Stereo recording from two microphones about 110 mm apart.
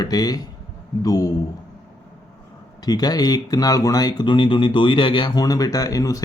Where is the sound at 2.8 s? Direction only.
35° left (ahead or behind).